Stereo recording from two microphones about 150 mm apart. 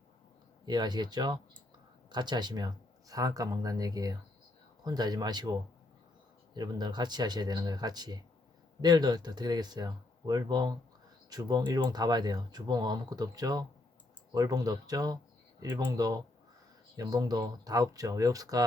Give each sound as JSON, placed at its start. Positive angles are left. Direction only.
{"t": 0.6, "sound": "speech", "side_deg": -30}